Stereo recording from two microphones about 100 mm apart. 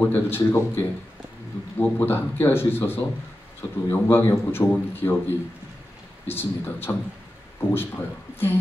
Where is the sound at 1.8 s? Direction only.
20° left (ahead or behind).